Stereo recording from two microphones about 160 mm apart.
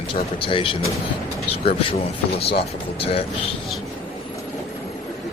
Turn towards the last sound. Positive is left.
turn(degrees=35)  # may be behind; listen again after turning